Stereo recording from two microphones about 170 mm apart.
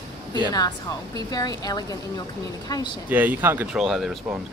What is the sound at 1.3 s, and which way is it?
Speech, 25° left (ahead or behind).